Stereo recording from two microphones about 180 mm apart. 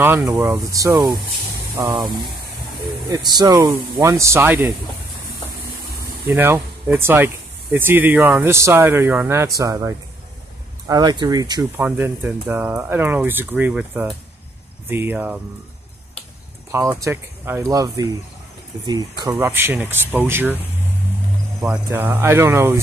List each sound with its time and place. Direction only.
0.0 s speech: 15° right (ahead or behind)
1.9 s speech: centre (ahead or behind)
3.3 s speech: 20° right (ahead or behind)
6.2 s speech: 10° right (ahead or behind)
11.7 s speech: 10° right (ahead or behind)
16.7 s speech: 15° right (ahead or behind)
21.5 s speech: 10° right (ahead or behind)